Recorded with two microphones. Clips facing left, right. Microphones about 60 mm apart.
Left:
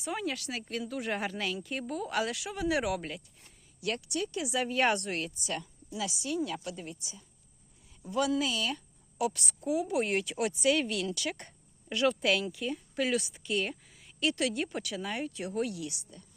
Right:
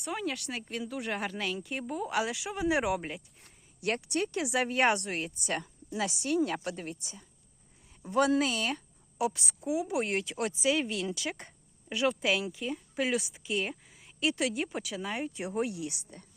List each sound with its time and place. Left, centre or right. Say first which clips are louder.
0.0 s speech: even; centre
1.8 s a woman's voice: right 1 dB; centre
3.8 s a woman's voice: right 3 dB; right
4.9 s a woman's voice: even; centre
5.4 s a woman's voice: right 3 dB; right
9.1 s a woman's voice: right 1 dB; centre
10.6 s a woman's voice: left 1 dB; centre
15.3 s speech: right 1 dB; right